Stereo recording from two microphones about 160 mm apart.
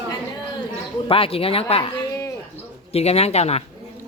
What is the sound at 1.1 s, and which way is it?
Speech, 35° left (ahead or behind).